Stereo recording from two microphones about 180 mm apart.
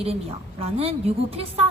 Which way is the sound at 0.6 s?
35° right (ahead or behind).